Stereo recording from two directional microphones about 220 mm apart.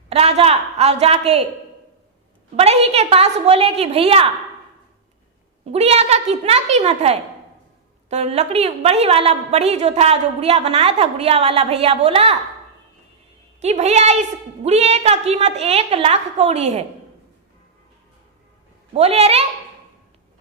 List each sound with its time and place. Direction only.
0.1 s a woman's voice: 30° right (ahead or behind)
2.6 s a woman's voice: 30° right (ahead or behind)
5.6 s a woman's voice: 30° right (ahead or behind)
13.6 s a woman's voice: 30° right (ahead or behind)
18.9 s a woman's voice: 30° right (ahead or behind)